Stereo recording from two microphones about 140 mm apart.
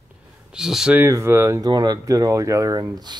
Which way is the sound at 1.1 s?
20° right (ahead or behind).